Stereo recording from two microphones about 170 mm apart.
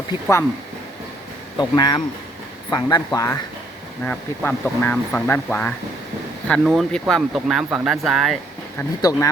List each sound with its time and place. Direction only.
0.1 s speech: 15° left (ahead or behind)
1.5 s speech: 25° left (ahead or behind)
4.0 s speech: 10° left (ahead or behind)
9.0 s speech: 20° left (ahead or behind)